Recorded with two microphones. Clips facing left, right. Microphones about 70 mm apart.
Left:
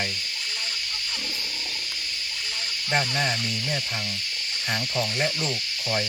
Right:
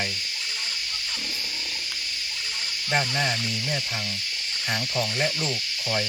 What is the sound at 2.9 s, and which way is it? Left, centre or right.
Speech, centre.